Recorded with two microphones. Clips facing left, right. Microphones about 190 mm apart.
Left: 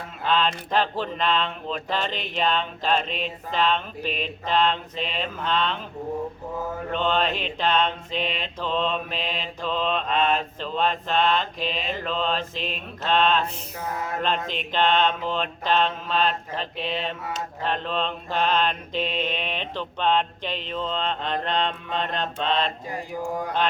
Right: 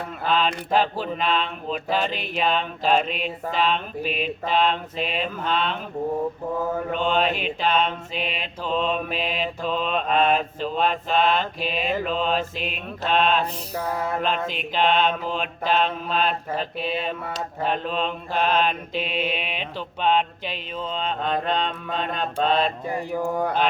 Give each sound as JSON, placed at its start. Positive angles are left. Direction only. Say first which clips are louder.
{"t": 0.3, "sound": "a sound", "louder": "right 1 dB", "side_deg": -5}
{"t": 3.5, "sound": "mantra", "louder": "even", "side_deg": -5}
{"t": 6.9, "sound": "mantra", "louder": "even", "side_deg": -5}
{"t": 13.4, "sound": "music", "louder": "right 4 dB", "side_deg": -35}
{"t": 14.2, "sound": "mantra", "louder": "right 1 dB", "side_deg": -5}